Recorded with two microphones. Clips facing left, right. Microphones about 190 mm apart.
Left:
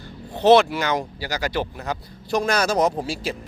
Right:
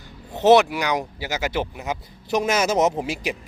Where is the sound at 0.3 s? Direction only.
15° right (ahead or behind).